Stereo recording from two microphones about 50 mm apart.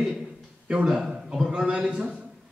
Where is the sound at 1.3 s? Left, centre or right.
Centre.